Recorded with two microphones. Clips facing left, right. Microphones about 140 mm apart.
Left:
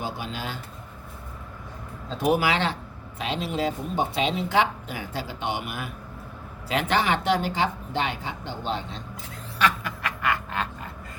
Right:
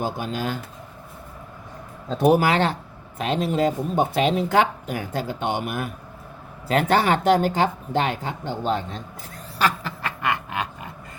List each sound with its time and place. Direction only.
0.0 s speech: 45° right (ahead or behind)
2.0 s speech: 45° right (ahead or behind)
9.6 s quack: 30° right (ahead or behind); by 10.9 s 15° right (ahead or behind)